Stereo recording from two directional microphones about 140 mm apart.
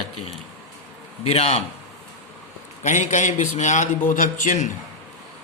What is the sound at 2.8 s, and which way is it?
A man's voice, 60° left (ahead or behind).